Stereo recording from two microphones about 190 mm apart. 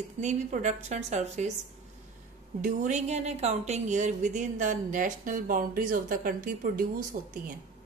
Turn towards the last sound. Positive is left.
turn(degrees=-45)  # may be behind; listen again after turning